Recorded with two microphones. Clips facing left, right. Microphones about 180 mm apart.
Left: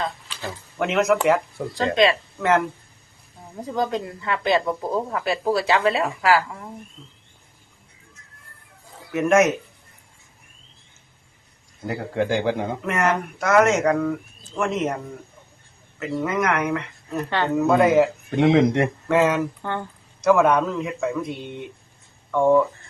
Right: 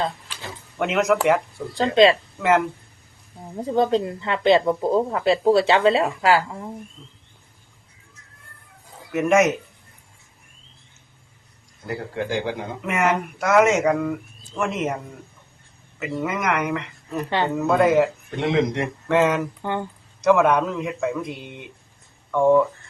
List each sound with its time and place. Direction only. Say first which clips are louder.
0.8 s speech: even; centre (ahead or behind)
1.7 s speech: right 4 dB; 30° right (ahead or behind)
2.4 s speech: right 1 dB; 5° right (ahead or behind)
3.6 s speech: right 5 dB; 30° right (ahead or behind)
9.1 s speech: even; centre (ahead or behind)
12.1 s speech: left 5 dB; 55° left (ahead or behind)
12.8 s speech: right 2 dB; 5° right (ahead or behind)
17.2 s speech: right 1 dB; 15° right (ahead or behind)
17.5 s speech: left 2 dB; centre (ahead or behind)
18.3 s speech: left 5 dB; 55° left (ahead or behind)
19.0 s speech: right 2 dB; centre (ahead or behind)
19.6 s speech: right 2 dB; 15° right (ahead or behind)
20.2 s speech: even; centre (ahead or behind)